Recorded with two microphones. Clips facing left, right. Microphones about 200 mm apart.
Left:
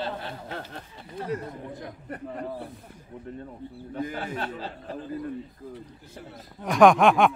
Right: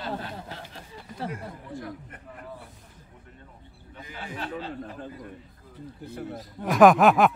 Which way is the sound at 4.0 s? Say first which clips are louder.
Left 6 dB; 50° left (ahead or behind).